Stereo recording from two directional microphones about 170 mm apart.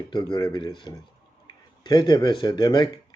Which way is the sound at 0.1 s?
25° left (ahead or behind).